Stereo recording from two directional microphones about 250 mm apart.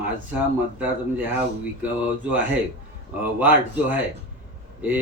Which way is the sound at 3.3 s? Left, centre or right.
Centre.